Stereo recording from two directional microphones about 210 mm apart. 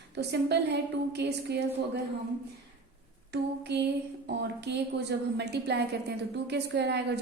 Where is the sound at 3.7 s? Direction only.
55° right (ahead or behind).